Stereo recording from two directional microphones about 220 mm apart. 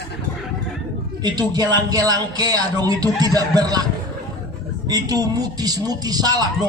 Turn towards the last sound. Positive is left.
turn(degrees=-20)  # may be behind; listen again after turning